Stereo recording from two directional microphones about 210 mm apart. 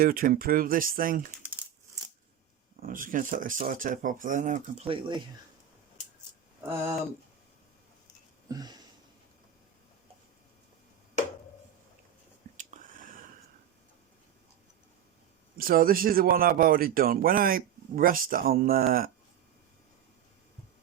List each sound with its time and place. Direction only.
0.0 s speech: 40° right (ahead or behind)
1.4 s crumpling: 5° right (ahead or behind)
2.8 s speech: 40° right (ahead or behind); by 5.2 s 25° right (ahead or behind)
6.6 s speech: 10° right (ahead or behind)
8.4 s a sound: 20° right (ahead or behind)
12.5 s a sound: 40° right (ahead or behind)
15.5 s speech: 45° right (ahead or behind)